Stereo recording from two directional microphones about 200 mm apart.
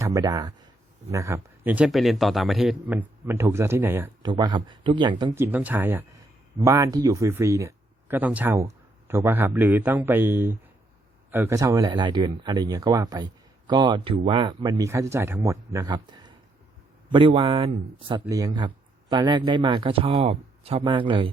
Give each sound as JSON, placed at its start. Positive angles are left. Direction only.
{"t": 0.0, "sound": "a man's voice", "side_deg": -15}